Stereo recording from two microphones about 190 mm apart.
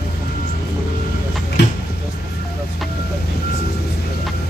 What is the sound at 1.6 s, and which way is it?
Speech, 65° left (ahead or behind).